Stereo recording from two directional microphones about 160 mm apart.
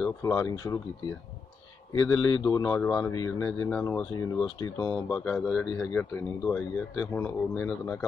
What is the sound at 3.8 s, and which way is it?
Speech, 10° left (ahead or behind).